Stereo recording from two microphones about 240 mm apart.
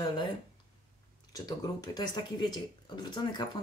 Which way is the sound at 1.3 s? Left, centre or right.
Centre.